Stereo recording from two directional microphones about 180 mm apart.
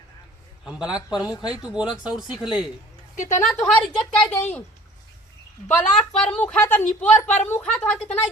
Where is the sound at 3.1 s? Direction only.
40° left (ahead or behind).